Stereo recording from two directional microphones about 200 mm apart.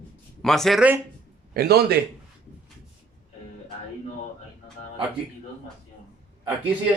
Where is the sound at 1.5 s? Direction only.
50° right (ahead or behind).